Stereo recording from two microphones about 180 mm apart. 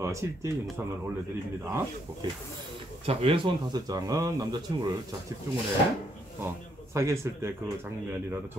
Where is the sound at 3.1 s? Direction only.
30° right (ahead or behind).